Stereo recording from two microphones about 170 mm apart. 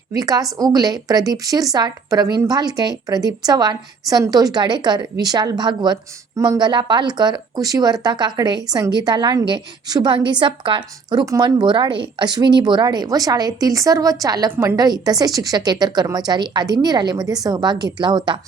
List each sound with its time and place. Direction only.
0.1 s a woman's voice: 20° right (ahead or behind)